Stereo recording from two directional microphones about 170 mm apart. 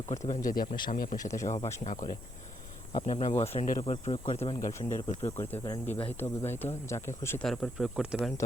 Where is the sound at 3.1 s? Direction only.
40° left (ahead or behind).